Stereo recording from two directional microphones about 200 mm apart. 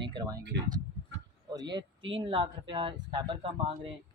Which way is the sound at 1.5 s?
20° right (ahead or behind).